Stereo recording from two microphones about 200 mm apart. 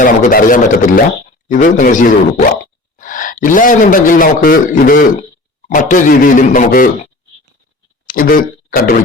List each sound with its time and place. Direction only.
0.0 s a man's voice: 45° left (ahead or behind)
8.0 s speech: 45° left (ahead or behind)